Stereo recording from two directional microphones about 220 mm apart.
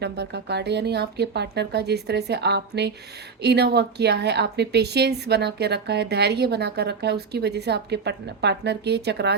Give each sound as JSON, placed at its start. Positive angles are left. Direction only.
{"t": 0.0, "sound": "a woman's voice", "side_deg": -50}